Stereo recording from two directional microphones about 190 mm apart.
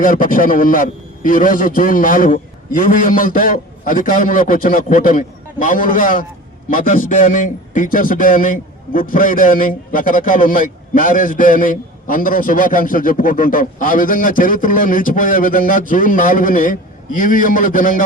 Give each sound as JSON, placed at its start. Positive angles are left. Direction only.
{"t": 0.0, "sound": "a man's voice", "side_deg": 45}